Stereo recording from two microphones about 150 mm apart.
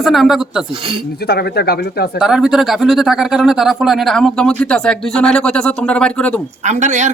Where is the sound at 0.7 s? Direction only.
35° right (ahead or behind).